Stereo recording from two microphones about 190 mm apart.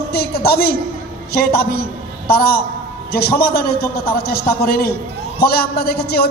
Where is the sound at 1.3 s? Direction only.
55° left (ahead or behind).